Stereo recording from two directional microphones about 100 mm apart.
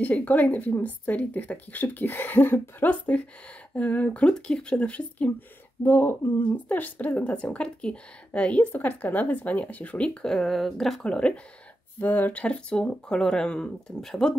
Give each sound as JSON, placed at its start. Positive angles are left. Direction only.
{"t": 0.0, "sound": "a woman's voice", "side_deg": 15}
{"t": 5.9, "sound": "a woman's voice", "side_deg": 25}